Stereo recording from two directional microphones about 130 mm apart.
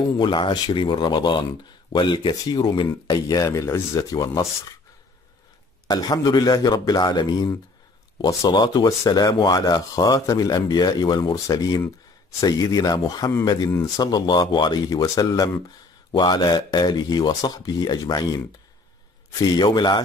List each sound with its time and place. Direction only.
0.2 s a man's voice: 35° left (ahead or behind)
5.9 s a man's voice: 30° left (ahead or behind)